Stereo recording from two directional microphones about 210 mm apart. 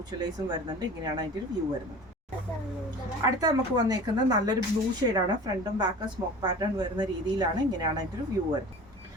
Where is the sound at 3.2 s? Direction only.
20° right (ahead or behind).